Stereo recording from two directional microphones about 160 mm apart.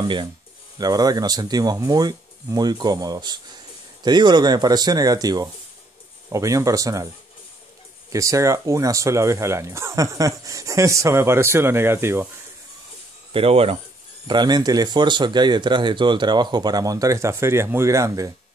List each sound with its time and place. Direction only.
0.7 s speech: 25° right (ahead or behind)
8.1 s speech: 20° right (ahead or behind)
13.3 s speech: 35° right (ahead or behind)
14.2 s speech: 25° right (ahead or behind)